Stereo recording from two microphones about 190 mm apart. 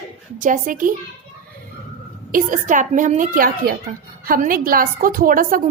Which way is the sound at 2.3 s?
45° right (ahead or behind).